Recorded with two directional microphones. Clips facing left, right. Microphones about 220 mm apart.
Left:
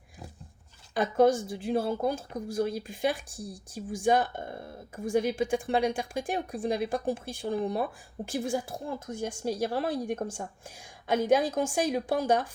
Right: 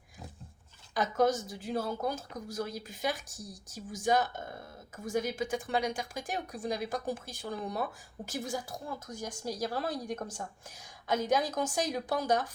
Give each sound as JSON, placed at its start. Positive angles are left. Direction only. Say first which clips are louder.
{"t": 0.9, "sound": "speech", "louder": "left 5 dB", "side_deg": 30}